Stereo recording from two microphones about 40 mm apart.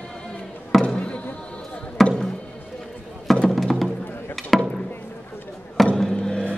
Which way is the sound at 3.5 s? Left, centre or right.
Centre.